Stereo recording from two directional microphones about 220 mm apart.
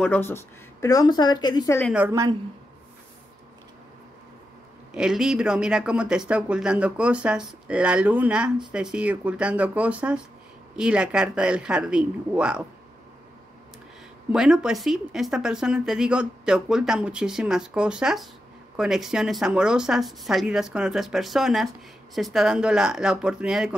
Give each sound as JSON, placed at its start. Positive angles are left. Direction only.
{"t": 0.0, "sound": "speech", "side_deg": 10}
{"t": 1.9, "sound": "a woman's voice", "side_deg": -10}
{"t": 4.9, "sound": "speech", "side_deg": -5}
{"t": 14.3, "sound": "speech", "side_deg": -5}